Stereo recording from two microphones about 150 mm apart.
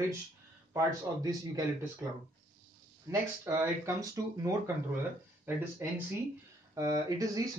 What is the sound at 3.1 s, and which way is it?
Speech, 20° right (ahead or behind).